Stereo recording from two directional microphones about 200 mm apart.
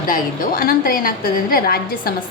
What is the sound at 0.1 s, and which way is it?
A woman's voice, 45° left (ahead or behind).